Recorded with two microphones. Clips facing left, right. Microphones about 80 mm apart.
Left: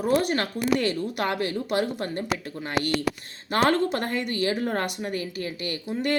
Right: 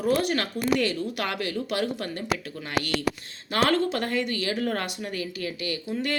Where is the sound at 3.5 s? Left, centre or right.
Left.